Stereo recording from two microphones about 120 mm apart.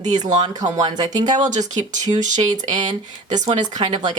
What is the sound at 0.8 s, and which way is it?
Speech, 35° right (ahead or behind).